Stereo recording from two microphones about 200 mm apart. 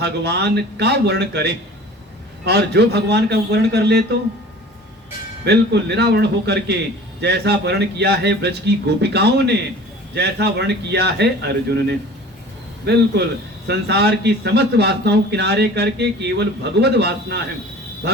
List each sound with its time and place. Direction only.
0.0 s speech: 55° right (ahead or behind)
5.5 s speech: 55° right (ahead or behind)